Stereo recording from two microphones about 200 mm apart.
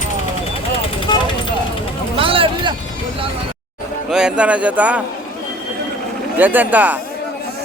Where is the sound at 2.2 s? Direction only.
25° right (ahead or behind).